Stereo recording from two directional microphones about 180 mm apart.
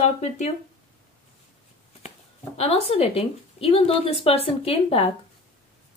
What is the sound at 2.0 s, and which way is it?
Speech, 35° left (ahead or behind).